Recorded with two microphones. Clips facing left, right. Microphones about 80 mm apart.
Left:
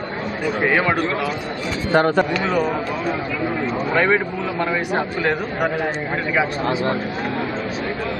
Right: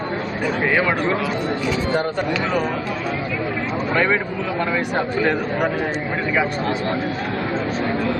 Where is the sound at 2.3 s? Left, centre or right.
Centre.